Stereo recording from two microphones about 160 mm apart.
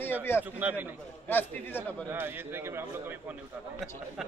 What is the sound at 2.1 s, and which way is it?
A man's voice, 15° right (ahead or behind).